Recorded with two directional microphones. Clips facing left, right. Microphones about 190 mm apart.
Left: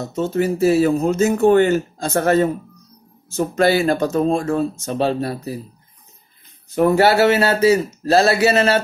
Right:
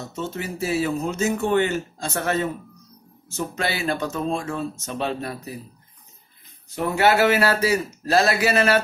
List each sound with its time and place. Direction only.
0.0 s speech: 40° left (ahead or behind)
6.7 s speech: 50° left (ahead or behind); by 8.8 s 25° left (ahead or behind)